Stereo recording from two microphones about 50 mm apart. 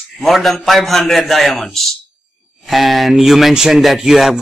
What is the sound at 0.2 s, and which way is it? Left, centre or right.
Speech, centre.